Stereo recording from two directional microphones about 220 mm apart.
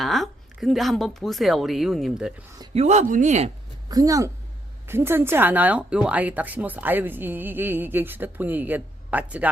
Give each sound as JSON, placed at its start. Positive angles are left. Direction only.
{"t": 0.0, "sound": "a woman's voice", "side_deg": 0}
{"t": 2.6, "sound": "speech", "side_deg": -30}
{"t": 3.8, "sound": "speech", "side_deg": -15}